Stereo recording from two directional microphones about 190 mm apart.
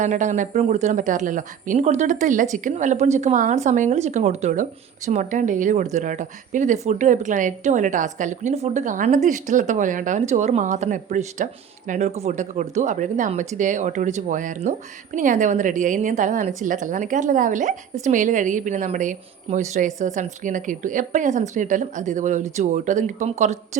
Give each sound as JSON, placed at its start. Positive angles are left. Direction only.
{"t": 0.0, "sound": "speech", "side_deg": -40}